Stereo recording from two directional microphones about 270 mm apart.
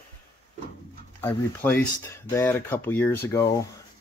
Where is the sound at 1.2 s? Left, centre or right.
Centre.